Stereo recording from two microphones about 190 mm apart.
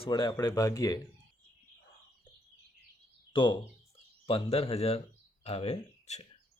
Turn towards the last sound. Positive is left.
turn(degrees=35)  # may be behind; listen again after turning